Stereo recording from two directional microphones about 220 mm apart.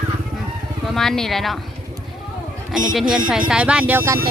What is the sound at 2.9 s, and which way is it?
Speech, 5° right (ahead or behind).